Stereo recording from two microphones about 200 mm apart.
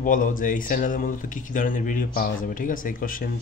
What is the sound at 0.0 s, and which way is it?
Speech, 40° left (ahead or behind).